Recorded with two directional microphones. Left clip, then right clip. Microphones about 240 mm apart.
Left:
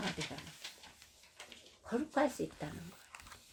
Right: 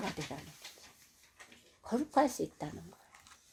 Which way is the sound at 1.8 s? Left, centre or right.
Right.